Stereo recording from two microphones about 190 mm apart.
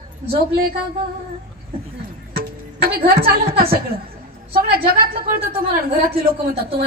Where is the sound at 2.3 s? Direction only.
50° right (ahead or behind).